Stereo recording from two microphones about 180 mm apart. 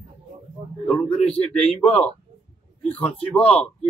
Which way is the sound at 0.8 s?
5° left (ahead or behind).